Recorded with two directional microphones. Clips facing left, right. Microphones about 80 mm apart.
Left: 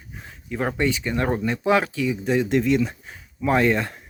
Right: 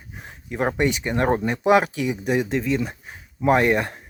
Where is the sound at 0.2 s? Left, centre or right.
Right.